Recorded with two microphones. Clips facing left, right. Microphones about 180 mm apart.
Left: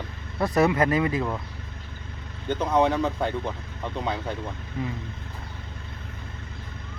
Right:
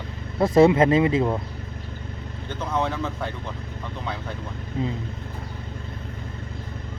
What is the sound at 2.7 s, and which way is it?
Speech, 15° left (ahead or behind).